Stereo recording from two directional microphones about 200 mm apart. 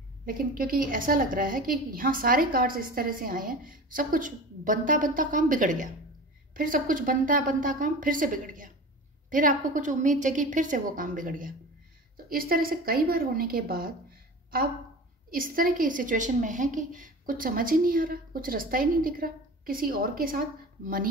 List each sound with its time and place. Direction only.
0.2 s a woman's voice: 45° right (ahead or behind)
15.2 s a woman's voice: 45° right (ahead or behind)